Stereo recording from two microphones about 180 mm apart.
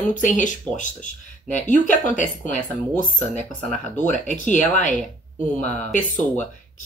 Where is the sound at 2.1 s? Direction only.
45° left (ahead or behind).